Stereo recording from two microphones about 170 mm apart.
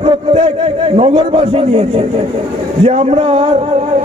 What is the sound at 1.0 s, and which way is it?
A man's voice, 35° right (ahead or behind).